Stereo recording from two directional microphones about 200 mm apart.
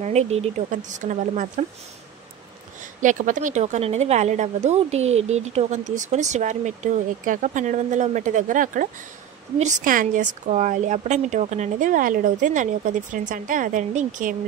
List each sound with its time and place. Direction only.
0.0 s a woman's voice: 35° right (ahead or behind)
2.8 s a woman's voice: 40° right (ahead or behind)